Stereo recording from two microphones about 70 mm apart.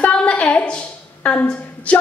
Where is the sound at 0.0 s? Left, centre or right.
Centre.